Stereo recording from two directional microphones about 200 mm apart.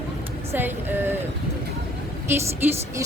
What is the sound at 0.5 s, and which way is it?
Speech, 10° right (ahead or behind).